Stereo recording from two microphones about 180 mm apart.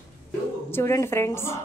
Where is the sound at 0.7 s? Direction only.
15° left (ahead or behind).